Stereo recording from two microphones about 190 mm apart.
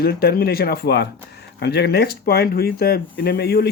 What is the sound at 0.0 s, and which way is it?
Speech, 55° left (ahead or behind).